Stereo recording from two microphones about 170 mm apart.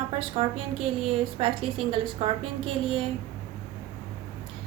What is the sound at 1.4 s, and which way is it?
A woman's voice, 35° right (ahead or behind).